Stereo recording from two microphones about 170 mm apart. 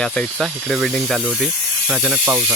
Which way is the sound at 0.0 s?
5° left (ahead or behind).